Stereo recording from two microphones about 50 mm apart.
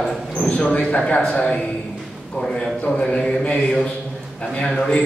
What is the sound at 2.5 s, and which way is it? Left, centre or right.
A man's voice, left.